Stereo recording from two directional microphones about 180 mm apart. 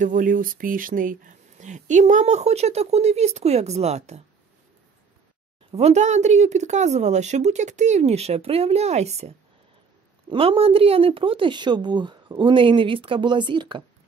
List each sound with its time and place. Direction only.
0.0 s speech: 50° right (ahead or behind)
5.7 s speech: 35° right (ahead or behind)
10.3 s a woman's voice: 30° right (ahead or behind)